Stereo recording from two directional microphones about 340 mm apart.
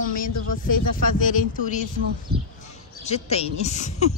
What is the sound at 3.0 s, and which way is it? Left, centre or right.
Speech, centre.